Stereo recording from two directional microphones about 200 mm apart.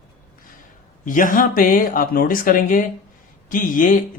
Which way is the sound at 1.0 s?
40° left (ahead or behind).